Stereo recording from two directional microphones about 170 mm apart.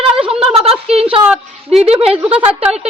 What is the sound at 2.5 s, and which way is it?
Speech, 35° right (ahead or behind).